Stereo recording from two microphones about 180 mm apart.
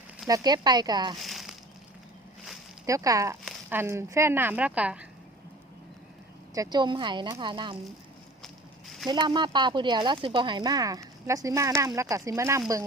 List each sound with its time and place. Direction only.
0.3 s speech: 20° right (ahead or behind)
1.2 s a sound: centre (ahead or behind)
2.8 s speech: 20° right (ahead or behind)
6.5 s speech: 20° right (ahead or behind)
9.0 s speech: 25° right (ahead or behind)